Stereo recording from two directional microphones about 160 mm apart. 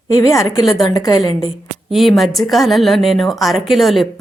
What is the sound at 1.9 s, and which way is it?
A woman's voice, centre (ahead or behind).